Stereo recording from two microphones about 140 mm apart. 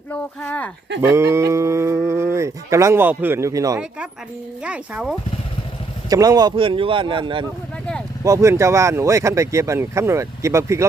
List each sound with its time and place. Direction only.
0.1 s speech: 10° left (ahead or behind)
1.1 s speech: 20° right (ahead or behind)
4.6 s speech: 10° right (ahead or behind)
6.1 s speech: 25° right (ahead or behind)
8.2 s speech: 20° right (ahead or behind)